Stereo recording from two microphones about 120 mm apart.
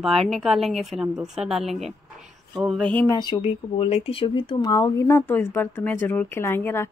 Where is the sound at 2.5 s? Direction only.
5° right (ahead or behind).